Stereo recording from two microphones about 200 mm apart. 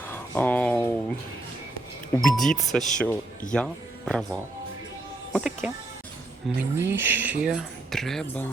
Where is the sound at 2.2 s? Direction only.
Centre (ahead or behind).